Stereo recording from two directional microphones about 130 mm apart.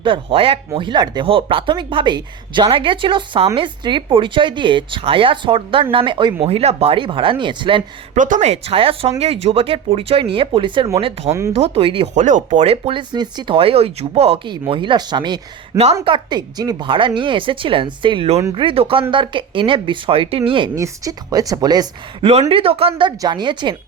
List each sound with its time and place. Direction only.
0.0 s speech: 40° right (ahead or behind)
6.4 s speech: 50° right (ahead or behind)
8.1 s speech: 70° right (ahead or behind); by 10.8 s 45° right (ahead or behind)
11.3 s a woman's voice: 25° right (ahead or behind)
11.5 s speech: 50° right (ahead or behind)
12.1 s speech: 70° right (ahead or behind)
12.6 s speech: 50° right (ahead or behind)
20.7 s a woman's voice: 25° right (ahead or behind)
22.2 s speech: 50° right (ahead or behind)